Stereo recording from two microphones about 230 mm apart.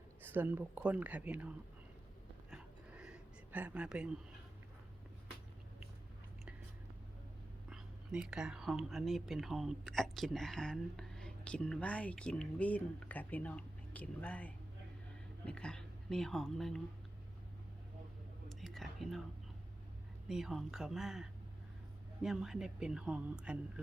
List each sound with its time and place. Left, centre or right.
0.2 s speech: centre
2.5 s a sound: centre
7.7 s speech: centre
18.4 s whispering: centre
20.2 s speech: centre